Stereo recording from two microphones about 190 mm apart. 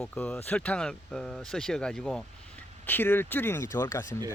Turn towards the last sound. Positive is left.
turn(degrees=15)  # may be behind; listen again after turning